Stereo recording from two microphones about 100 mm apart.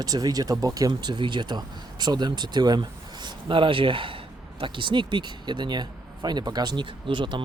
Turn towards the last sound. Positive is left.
turn(degrees=-50)  # may be behind; listen again after turning